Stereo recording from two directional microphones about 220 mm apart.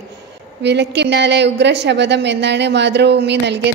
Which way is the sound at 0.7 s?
50° right (ahead or behind).